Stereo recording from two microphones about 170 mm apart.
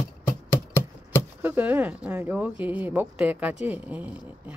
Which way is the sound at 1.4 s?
10° right (ahead or behind).